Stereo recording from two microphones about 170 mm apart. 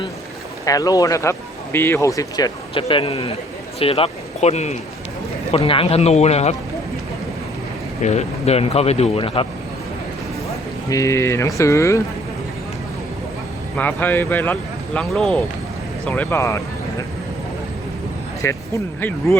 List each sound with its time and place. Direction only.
0.6 s speech: 20° left (ahead or behind)
2.8 s speech: 35° left (ahead or behind)
8.0 s speech: 40° left (ahead or behind)
10.8 s speech: 20° left (ahead or behind)
13.7 s speech: 10° left (ahead or behind)
18.4 s speech: 15° left (ahead or behind)